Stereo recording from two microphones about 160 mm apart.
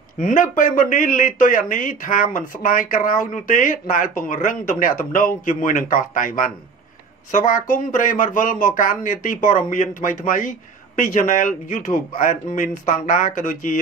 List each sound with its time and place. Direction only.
0.2 s speech: 55° left (ahead or behind)